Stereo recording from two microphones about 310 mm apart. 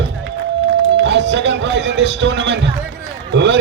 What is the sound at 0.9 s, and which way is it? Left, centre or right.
A man's voice, right.